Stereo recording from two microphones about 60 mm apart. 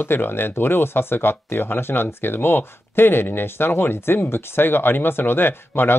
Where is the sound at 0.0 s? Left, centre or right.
Left.